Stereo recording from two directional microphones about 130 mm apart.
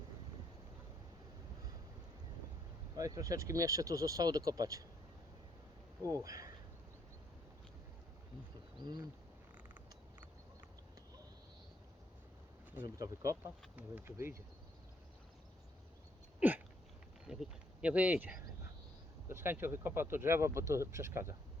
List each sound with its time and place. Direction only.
2.9 s speech: 25° right (ahead or behind)
6.0 s speech: 25° right (ahead or behind)
8.8 s speech: 35° right (ahead or behind)
12.8 s speech: 25° right (ahead or behind)
16.4 s hiccup: 10° right (ahead or behind)
17.2 s speech: 5° right (ahead or behind)